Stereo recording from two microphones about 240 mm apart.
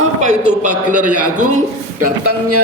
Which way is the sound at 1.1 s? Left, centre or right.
Right.